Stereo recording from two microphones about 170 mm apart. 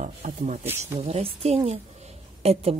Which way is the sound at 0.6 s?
10° right (ahead or behind).